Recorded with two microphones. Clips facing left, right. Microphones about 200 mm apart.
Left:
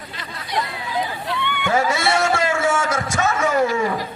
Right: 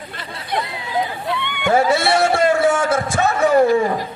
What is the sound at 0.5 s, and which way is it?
Chatter, 55° right (ahead or behind).